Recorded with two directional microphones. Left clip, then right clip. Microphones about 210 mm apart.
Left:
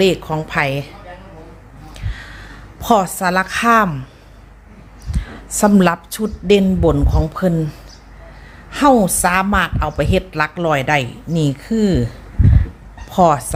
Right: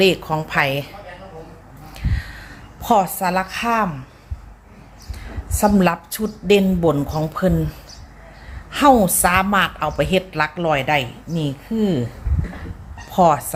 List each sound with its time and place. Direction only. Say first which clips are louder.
0.0 s a woman's voice: left 1 dB; 15° left (ahead or behind)
1.9 s a sound: right 1 dB; 15° left (ahead or behind); by 3.9 s 35° left (ahead or behind)
5.5 s a woman's voice: left 3 dB; 25° left (ahead or behind)
8.7 s a woman's voice: left 1 dB; 10° left (ahead or behind)
13.1 s a woman's voice: left 2 dB; 15° left (ahead or behind)